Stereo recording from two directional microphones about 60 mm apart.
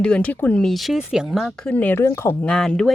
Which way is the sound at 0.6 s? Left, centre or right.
Centre.